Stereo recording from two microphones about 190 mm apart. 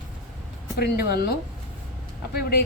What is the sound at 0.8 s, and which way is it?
A woman's voice, 55° left (ahead or behind).